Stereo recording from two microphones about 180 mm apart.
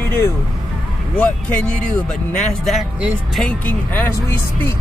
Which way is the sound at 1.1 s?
5° left (ahead or behind).